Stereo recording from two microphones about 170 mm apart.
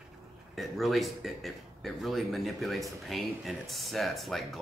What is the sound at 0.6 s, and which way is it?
Speech, centre (ahead or behind).